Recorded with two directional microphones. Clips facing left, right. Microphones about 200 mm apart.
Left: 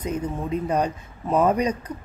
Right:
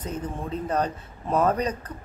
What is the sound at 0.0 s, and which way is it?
A woman's voice, 10° left (ahead or behind).